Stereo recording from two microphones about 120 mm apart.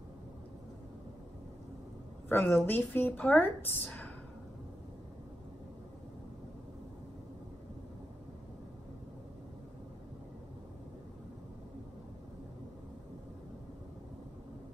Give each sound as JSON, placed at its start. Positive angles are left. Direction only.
{"t": 2.2, "sound": "a woman's voice", "side_deg": 20}